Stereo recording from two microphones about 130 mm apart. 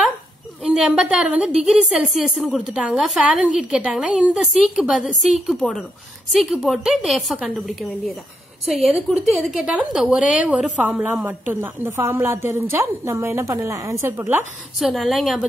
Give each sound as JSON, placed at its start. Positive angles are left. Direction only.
{"t": 0.6, "sound": "a woman's voice", "side_deg": -5}
{"t": 11.2, "sound": "a woman's voice", "side_deg": -15}
{"t": 14.8, "sound": "speech", "side_deg": 0}